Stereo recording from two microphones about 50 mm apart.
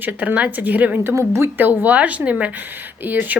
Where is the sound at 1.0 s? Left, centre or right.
Right.